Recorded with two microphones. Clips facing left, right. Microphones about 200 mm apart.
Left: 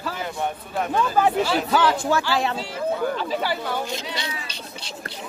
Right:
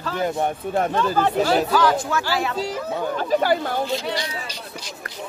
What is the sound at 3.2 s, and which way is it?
Speech, 50° right (ahead or behind).